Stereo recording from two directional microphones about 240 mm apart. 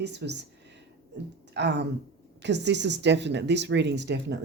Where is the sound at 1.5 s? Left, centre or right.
Right.